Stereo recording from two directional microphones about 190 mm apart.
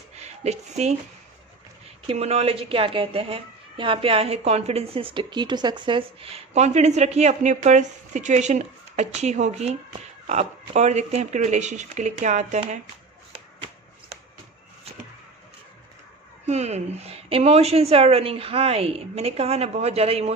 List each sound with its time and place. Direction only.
0.2 s speech: 35° right (ahead or behind)
2.0 s a woman's voice: 35° right (ahead or behind)
16.5 s a woman's voice: 35° right (ahead or behind)